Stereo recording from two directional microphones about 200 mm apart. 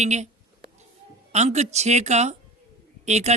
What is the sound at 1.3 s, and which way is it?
A man's voice, 35° right (ahead or behind).